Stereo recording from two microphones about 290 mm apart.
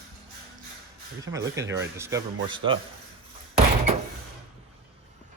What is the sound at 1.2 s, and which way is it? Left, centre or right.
Speech, centre.